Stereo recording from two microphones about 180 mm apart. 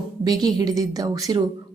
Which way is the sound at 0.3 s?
20° right (ahead or behind).